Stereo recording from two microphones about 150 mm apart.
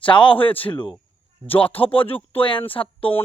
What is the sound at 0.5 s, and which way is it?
Speech, 10° left (ahead or behind).